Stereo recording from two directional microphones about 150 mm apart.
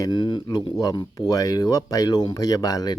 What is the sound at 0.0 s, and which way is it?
Speech, 30° left (ahead or behind).